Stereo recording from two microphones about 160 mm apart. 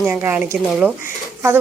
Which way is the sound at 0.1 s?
10° right (ahead or behind).